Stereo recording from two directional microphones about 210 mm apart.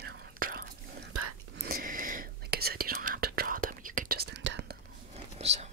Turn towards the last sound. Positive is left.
turn(degrees=-30)  # may be behind; listen again after turning